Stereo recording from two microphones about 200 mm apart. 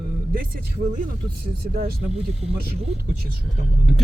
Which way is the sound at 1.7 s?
50° right (ahead or behind).